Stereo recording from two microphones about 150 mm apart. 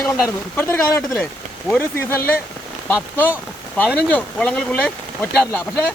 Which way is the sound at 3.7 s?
10° left (ahead or behind).